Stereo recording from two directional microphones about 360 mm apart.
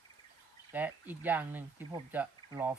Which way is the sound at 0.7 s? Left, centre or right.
Centre.